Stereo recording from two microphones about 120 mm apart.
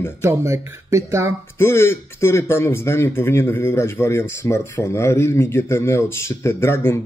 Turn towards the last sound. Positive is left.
turn(degrees=20)  # may be behind; listen again after turning